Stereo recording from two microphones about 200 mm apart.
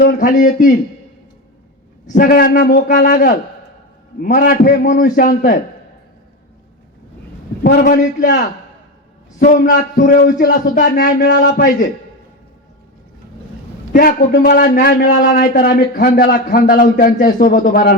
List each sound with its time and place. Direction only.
0.2 s a man's voice: 40° left (ahead or behind)
2.0 s a man's voice: 45° left (ahead or behind)
7.6 s a man's voice: 45° left (ahead or behind)
13.9 s a man's voice: 45° left (ahead or behind)